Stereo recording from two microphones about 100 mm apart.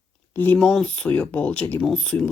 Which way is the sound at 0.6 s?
5° left (ahead or behind).